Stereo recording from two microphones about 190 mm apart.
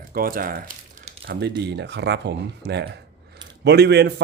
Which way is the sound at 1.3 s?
60° right (ahead or behind).